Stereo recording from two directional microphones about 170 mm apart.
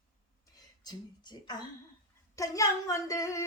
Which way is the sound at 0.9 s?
25° left (ahead or behind).